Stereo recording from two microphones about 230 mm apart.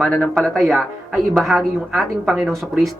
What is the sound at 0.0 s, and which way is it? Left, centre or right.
Speech, centre.